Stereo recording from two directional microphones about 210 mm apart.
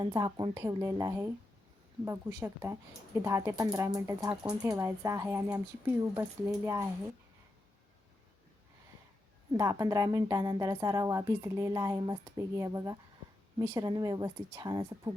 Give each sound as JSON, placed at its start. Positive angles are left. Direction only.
{"t": 0.0, "sound": "speech", "side_deg": -20}
{"t": 9.5, "sound": "speech", "side_deg": -15}